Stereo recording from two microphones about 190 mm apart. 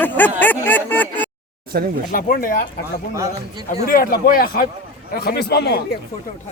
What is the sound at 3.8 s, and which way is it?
A man's voice, 50° left (ahead or behind).